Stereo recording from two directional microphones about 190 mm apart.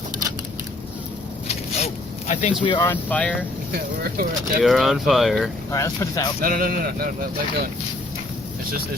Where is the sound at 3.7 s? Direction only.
50° right (ahead or behind).